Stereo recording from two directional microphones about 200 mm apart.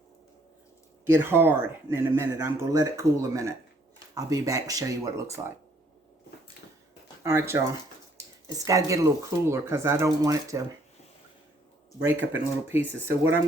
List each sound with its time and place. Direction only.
1.1 s speech: 10° right (ahead or behind)
7.2 s speech: 15° right (ahead or behind)
12.0 s speech: 10° right (ahead or behind)